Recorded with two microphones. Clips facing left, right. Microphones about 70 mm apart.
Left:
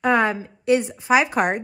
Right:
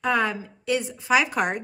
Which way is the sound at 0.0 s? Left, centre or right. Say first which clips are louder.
Left 4 dB; left.